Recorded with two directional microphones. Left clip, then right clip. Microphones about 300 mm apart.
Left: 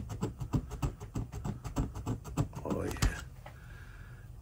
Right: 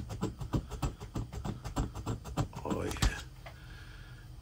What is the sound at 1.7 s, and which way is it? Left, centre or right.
Beatboxing, centre.